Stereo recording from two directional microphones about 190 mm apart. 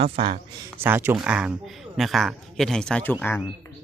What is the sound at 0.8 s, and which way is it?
Speech, 10° right (ahead or behind).